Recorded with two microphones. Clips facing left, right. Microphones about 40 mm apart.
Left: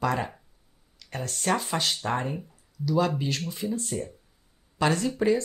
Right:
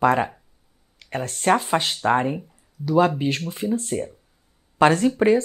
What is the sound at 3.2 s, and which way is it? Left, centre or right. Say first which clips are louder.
Speech: right 6 dB; right.